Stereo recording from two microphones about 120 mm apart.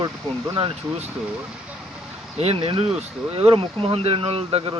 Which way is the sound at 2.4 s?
50° right (ahead or behind).